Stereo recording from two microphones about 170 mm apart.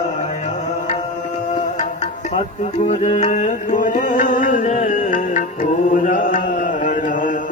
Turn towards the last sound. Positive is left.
turn(degrees=50)  # may be behind; listen again after turning